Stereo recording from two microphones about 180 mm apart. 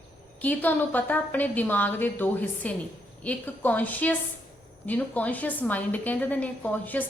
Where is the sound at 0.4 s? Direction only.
10° left (ahead or behind).